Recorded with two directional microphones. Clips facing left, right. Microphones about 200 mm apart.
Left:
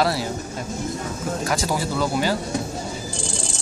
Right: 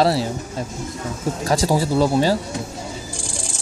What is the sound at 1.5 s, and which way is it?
Speech, 30° right (ahead or behind).